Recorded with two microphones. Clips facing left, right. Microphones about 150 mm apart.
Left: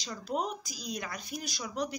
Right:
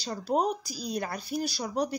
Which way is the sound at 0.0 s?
35° right (ahead or behind).